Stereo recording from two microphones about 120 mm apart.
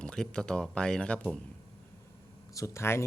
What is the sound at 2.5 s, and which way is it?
Speech, 25° left (ahead or behind).